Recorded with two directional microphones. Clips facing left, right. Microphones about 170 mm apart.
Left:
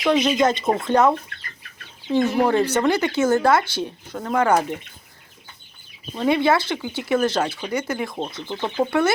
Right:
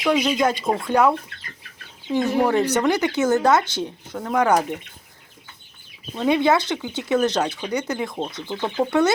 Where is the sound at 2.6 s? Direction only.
15° right (ahead or behind).